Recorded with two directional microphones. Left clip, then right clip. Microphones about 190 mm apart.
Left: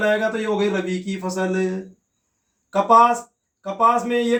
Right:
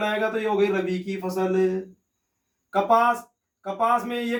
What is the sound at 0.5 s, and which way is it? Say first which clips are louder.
Speech: left 1 dB; 25° left (ahead or behind).